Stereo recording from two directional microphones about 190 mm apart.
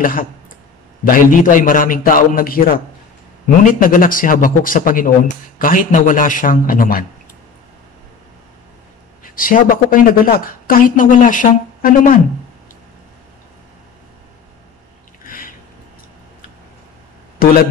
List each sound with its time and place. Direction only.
0.0 s a woman's voice: 45° left (ahead or behind)
9.2 s a woman's voice: 45° left (ahead or behind)
15.2 s a sound: 50° left (ahead or behind)